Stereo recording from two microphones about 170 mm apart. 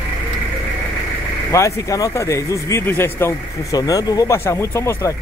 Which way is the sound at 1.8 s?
20° left (ahead or behind).